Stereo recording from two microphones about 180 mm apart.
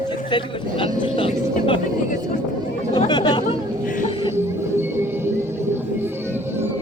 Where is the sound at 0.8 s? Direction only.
30° left (ahead or behind).